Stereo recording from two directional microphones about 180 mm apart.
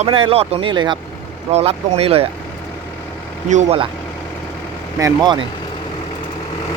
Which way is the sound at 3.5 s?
35° right (ahead or behind).